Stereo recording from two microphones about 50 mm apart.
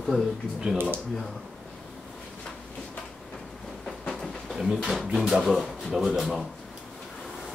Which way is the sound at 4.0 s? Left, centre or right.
Centre.